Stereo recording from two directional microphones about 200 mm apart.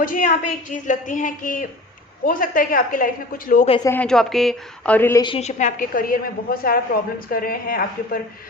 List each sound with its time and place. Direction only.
0.0 s a woman's voice: 40° left (ahead or behind)
3.8 s speech: 5° left (ahead or behind)
5.2 s a woman's voice: 30° left (ahead or behind); by 8.2 s 45° left (ahead or behind)